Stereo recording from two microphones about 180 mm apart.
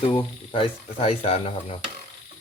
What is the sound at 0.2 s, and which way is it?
Speech, 30° left (ahead or behind).